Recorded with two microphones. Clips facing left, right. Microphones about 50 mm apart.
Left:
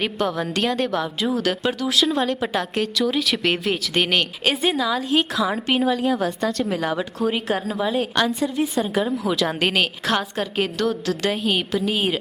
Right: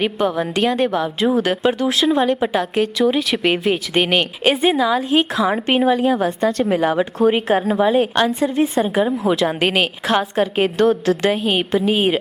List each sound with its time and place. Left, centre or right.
0.0 s a woman's voice: centre
1.4 s a woman's voice: right
1.9 s a woman's voice: centre
5.5 s a woman's voice: right
7.2 s speech: right
7.9 s a woman's voice: centre
9.3 s a woman's voice: centre